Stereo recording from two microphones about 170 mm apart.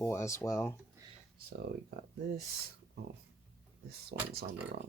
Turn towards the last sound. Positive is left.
turn(degrees=-70)  # may be behind; listen again after turning